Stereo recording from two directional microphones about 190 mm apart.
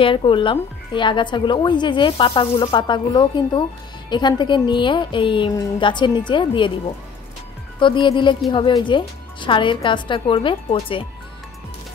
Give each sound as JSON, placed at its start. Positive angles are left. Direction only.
{"t": 0.0, "sound": "a woman's voice", "side_deg": 25}
{"t": 7.8, "sound": "a woman's voice", "side_deg": 25}